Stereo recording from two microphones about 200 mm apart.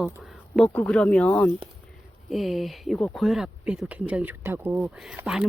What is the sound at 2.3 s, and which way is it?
Speech, centre (ahead or behind).